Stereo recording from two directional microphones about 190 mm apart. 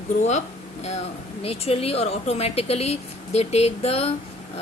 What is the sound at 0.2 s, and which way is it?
A woman's voice, 35° left (ahead or behind).